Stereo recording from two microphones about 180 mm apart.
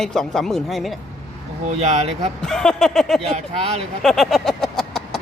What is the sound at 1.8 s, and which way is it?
Speech, 35° right (ahead or behind).